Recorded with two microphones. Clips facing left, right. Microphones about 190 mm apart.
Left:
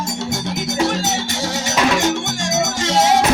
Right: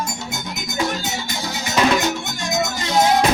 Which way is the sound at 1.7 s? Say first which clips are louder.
Even; 85° left.